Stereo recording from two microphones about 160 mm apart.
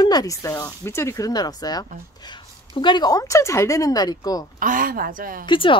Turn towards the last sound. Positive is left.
turn(degrees=30)  # may be behind; listen again after turning